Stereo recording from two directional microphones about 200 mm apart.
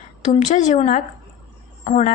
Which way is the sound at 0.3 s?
35° left (ahead or behind).